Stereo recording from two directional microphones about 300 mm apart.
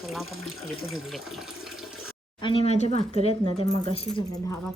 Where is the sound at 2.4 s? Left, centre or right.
Centre.